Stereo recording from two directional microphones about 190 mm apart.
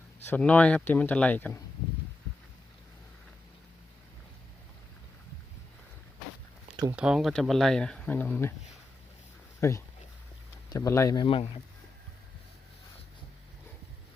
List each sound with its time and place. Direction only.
0.3 s speech: 5° left (ahead or behind)
6.9 s speech: 5° right (ahead or behind)
9.6 s speech: 15° left (ahead or behind)